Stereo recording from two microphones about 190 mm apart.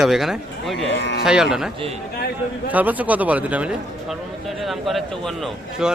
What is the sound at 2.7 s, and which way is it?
A man's voice, 10° right (ahead or behind).